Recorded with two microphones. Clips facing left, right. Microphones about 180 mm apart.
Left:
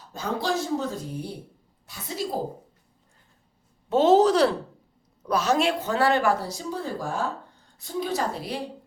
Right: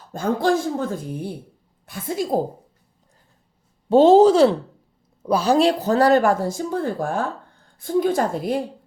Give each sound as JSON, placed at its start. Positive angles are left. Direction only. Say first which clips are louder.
{"t": 0.1, "sound": "speech", "louder": "right 7 dB", "side_deg": -50}
{"t": 3.8, "sound": "speech", "louder": "right 6 dB", "side_deg": -30}